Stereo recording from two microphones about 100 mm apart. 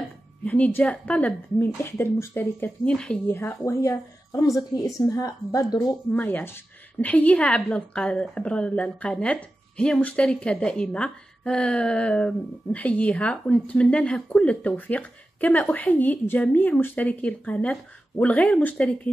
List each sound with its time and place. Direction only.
0.5 s a woman's voice: 15° left (ahead or behind)
1.6 s speech: 25° left (ahead or behind)
2.8 s a woman's voice: 10° left (ahead or behind)
3.3 s a woman's voice: 20° left (ahead or behind)
6.1 s a woman's voice: 15° left (ahead or behind)